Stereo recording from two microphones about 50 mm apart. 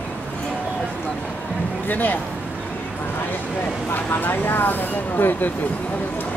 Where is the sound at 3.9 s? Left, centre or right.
Left.